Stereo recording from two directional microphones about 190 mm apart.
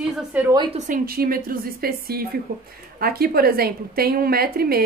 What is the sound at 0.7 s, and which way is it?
A woman's voice, 45° right (ahead or behind).